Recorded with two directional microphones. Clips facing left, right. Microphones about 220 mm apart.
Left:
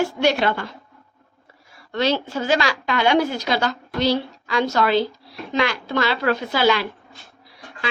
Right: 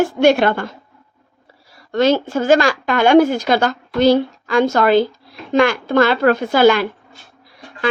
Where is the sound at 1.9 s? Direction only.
45° right (ahead or behind).